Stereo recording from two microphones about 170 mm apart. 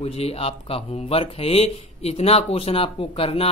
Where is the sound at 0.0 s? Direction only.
35° left (ahead or behind).